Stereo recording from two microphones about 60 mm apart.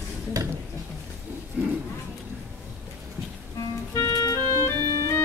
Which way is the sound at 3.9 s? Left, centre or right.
Left.